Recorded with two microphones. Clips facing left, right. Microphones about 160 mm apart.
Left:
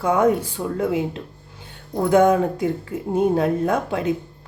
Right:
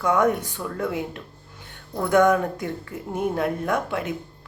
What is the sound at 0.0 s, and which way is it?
Speech, 30° left (ahead or behind).